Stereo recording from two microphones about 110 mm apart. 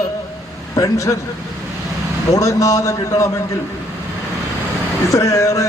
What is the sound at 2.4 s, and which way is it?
Speech, 30° left (ahead or behind).